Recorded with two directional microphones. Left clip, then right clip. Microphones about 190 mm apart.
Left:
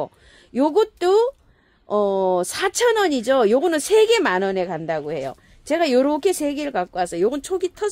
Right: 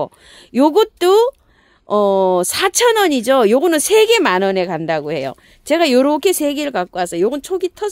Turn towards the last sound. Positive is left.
turn(degrees=-25)  # may be behind; listen again after turning